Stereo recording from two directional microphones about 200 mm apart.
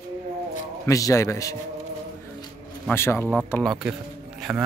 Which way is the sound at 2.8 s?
10° left (ahead or behind).